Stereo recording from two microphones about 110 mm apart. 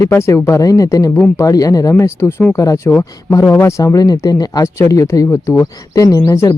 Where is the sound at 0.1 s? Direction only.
20° left (ahead or behind).